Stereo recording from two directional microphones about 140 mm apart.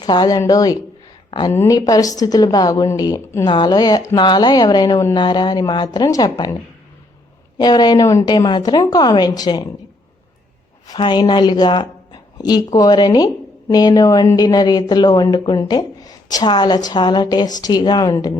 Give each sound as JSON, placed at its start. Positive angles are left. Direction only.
{"t": 0.0, "sound": "a woman's voice", "side_deg": 30}
{"t": 7.6, "sound": "a woman's voice", "side_deg": 30}
{"t": 10.8, "sound": "a woman's voice", "side_deg": 35}